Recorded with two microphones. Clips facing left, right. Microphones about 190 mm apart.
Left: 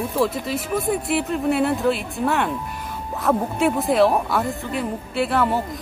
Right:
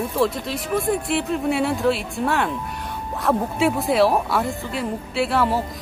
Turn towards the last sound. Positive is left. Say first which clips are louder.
# even
turn(degrees=0)  # may be behind; listen again after turning